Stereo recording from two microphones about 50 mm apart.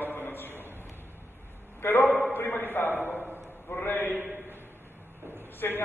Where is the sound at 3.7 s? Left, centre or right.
Left.